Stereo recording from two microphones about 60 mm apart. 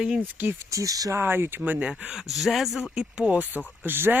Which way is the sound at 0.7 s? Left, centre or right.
Right.